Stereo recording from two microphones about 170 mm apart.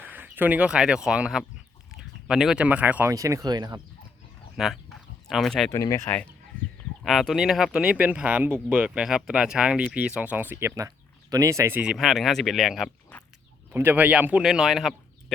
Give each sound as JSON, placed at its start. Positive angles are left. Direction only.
{"t": 0.0, "sound": "speech", "side_deg": -10}
{"t": 4.5, "sound": "speech", "side_deg": 0}
{"t": 5.7, "sound": "speech", "side_deg": 20}
{"t": 7.0, "sound": "speech", "side_deg": 0}
{"t": 11.8, "sound": "speech", "side_deg": -5}
{"t": 13.7, "sound": "speech", "side_deg": -10}